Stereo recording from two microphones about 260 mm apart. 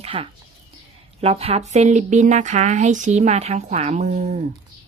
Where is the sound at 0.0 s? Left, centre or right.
Right.